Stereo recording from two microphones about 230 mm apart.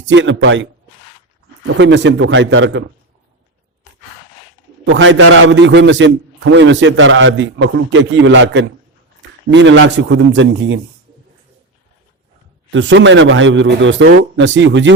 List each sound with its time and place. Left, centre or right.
0.0 s a man's voice: right
1.8 s a man's voice: right
4.9 s a man's voice: right
12.7 s a man's voice: right